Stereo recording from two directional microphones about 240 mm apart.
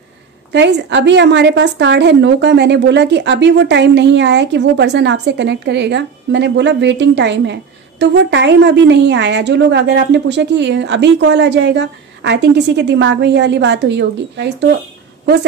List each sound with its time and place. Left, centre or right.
0.5 s a woman's voice: right